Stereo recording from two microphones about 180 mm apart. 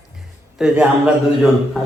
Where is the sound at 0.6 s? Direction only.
5° right (ahead or behind).